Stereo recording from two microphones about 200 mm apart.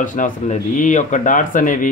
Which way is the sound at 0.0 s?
40° left (ahead or behind).